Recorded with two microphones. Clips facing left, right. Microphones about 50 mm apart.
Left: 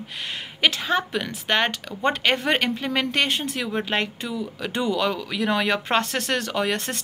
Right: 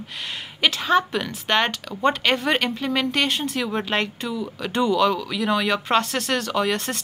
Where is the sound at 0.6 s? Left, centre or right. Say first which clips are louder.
Even; left.